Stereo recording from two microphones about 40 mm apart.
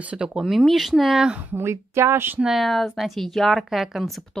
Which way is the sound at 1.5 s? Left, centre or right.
Right.